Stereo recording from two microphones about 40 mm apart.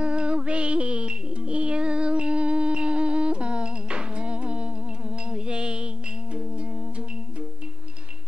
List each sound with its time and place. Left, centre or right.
0.0 s music: right